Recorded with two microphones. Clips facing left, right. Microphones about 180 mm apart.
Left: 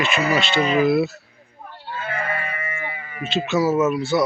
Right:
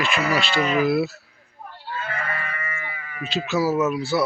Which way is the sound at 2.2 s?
30° left (ahead or behind).